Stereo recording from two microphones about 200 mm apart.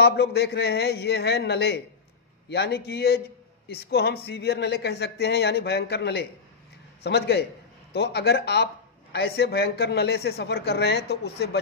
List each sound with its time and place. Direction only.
0.0 s a man's voice: 55° left (ahead or behind)